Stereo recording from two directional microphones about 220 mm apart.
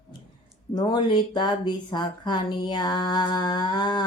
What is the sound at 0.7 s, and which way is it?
Speech, 20° left (ahead or behind).